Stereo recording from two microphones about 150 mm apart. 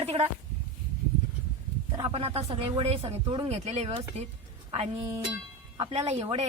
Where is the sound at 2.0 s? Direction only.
40° right (ahead or behind).